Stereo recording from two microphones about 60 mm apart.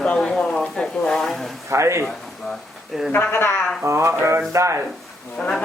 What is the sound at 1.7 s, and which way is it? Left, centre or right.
Speech, right.